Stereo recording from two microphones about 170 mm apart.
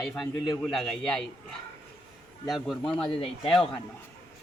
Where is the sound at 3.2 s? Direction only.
35° left (ahead or behind).